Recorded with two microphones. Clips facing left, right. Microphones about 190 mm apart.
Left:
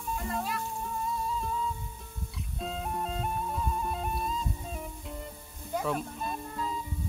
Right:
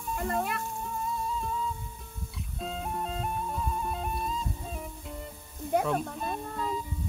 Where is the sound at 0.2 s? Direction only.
55° right (ahead or behind).